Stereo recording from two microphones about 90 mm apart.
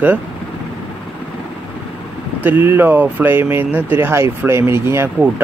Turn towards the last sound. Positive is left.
turn(degrees=-30)  # may be behind; listen again after turning